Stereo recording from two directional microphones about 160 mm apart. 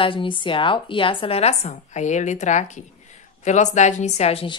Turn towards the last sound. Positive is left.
turn(degrees=35)  # may be behind; listen again after turning